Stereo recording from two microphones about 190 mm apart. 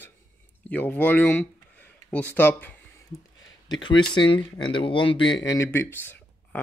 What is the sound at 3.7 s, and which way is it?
Speech, 25° left (ahead or behind).